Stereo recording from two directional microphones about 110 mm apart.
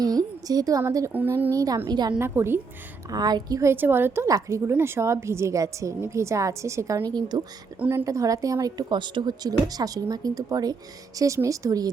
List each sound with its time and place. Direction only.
0.0 s a woman's voice: 35° right (ahead or behind)
1.1 s a woman's voice: 15° right (ahead or behind)
1.5 s a woman's voice: 35° right (ahead or behind)
2.1 s a woman's voice: 20° right (ahead or behind)
3.1 s a woman's voice: 40° right (ahead or behind)
3.6 s a woman's voice: 20° right (ahead or behind); by 7.4 s 40° right (ahead or behind)
7.8 s a woman's voice: 20° right (ahead or behind)